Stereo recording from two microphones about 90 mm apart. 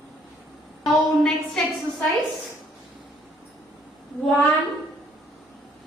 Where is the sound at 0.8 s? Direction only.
Centre (ahead or behind).